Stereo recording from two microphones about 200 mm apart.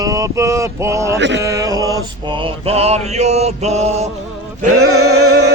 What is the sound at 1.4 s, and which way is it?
Male singing, 15° right (ahead or behind).